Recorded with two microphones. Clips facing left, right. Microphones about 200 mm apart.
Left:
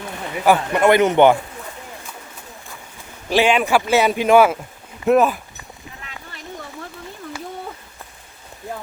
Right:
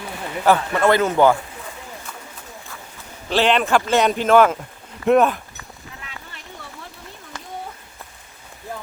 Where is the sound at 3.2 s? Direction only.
10° left (ahead or behind).